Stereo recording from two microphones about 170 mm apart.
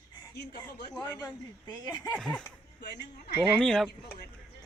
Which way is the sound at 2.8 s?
75° left (ahead or behind).